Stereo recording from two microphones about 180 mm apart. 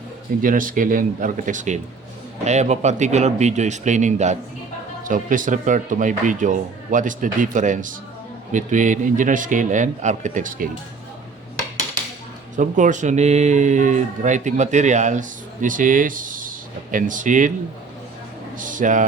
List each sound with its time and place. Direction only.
0.4 s speech: 50° right (ahead or behind)
12.5 s speech: 45° right (ahead or behind)
18.5 s speech: 45° right (ahead or behind)